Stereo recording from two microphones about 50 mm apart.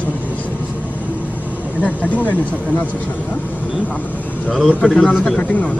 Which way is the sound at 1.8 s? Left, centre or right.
Left.